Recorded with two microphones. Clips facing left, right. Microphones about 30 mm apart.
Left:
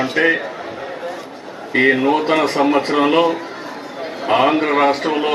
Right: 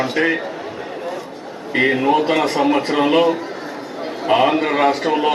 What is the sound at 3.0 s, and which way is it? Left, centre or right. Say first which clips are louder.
A man's voice: even; centre.